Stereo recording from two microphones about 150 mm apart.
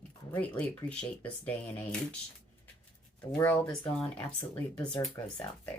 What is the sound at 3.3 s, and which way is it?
Speech, 15° left (ahead or behind).